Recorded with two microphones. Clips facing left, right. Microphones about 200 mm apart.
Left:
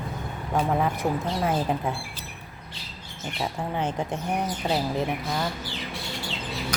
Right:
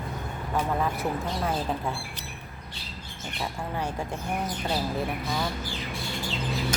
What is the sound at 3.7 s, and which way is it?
A woman's voice, 20° left (ahead or behind).